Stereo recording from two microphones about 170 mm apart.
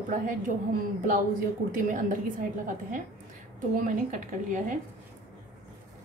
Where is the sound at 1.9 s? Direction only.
50° right (ahead or behind).